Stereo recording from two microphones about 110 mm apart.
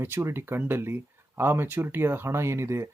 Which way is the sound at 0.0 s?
25° right (ahead or behind).